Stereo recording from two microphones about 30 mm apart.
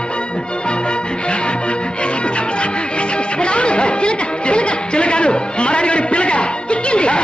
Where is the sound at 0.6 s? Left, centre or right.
Left.